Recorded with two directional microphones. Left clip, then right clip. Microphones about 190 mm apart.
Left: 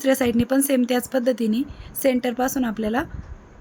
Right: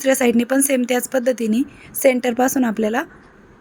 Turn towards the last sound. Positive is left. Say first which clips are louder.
# right 5 dB
turn(degrees=-20)  # may be behind; listen again after turning